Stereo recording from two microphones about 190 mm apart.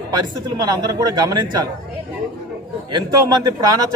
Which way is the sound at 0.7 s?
20° right (ahead or behind).